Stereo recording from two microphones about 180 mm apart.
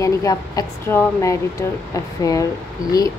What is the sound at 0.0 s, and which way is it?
Speech, 20° left (ahead or behind).